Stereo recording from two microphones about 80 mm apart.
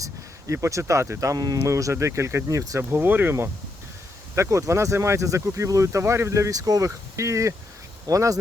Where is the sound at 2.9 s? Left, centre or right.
Right.